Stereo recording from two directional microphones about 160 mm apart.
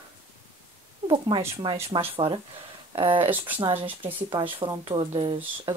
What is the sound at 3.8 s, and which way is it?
Speech, 30° right (ahead or behind).